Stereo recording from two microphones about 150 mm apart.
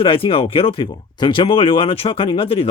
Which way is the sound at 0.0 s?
35° left (ahead or behind).